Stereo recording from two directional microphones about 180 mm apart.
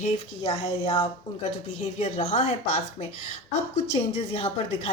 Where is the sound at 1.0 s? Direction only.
35° left (ahead or behind).